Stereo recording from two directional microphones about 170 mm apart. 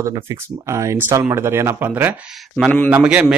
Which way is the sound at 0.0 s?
20° right (ahead or behind).